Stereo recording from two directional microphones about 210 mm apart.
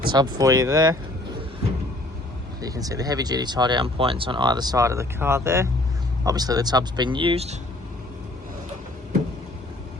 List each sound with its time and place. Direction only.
0.1 s speech: 20° right (ahead or behind)
2.6 s speech: 15° right (ahead or behind)